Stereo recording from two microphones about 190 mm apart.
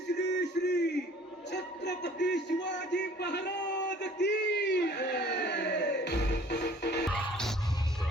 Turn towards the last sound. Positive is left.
turn(degrees=0)  # may be behind; listen again after turning